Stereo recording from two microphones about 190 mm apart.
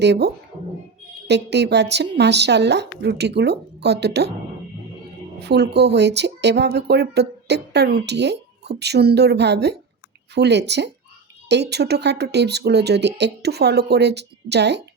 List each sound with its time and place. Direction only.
0.0 s speech: 60° right (ahead or behind)
5.4 s speech: 60° right (ahead or behind)